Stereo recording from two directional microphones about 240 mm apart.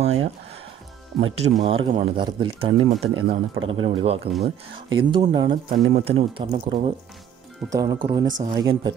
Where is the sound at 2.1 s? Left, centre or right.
Right.